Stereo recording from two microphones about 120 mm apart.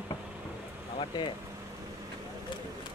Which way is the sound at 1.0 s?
45° left (ahead or behind).